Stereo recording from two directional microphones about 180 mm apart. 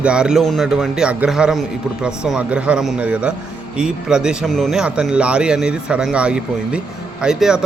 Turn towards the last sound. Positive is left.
turn(degrees=-5)  # may be behind; listen again after turning